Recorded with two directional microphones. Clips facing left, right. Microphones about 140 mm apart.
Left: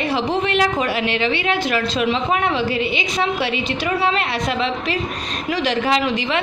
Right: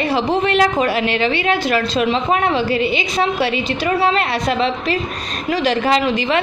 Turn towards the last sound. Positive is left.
turn(degrees=-40)  # may be behind; listen again after turning